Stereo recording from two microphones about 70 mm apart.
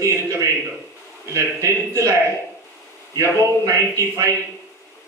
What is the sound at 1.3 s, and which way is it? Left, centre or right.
Speech, right.